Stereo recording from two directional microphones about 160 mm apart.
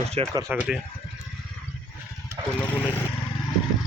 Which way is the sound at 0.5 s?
10° right (ahead or behind).